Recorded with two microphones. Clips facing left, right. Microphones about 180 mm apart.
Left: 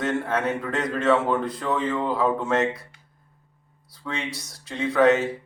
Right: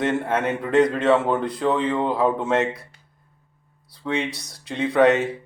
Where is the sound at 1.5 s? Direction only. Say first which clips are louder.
Right 4 dB; 20° right (ahead or behind).